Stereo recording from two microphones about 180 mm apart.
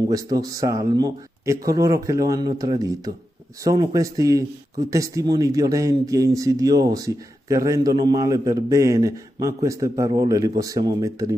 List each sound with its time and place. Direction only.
0.1 s speech: 20° right (ahead or behind)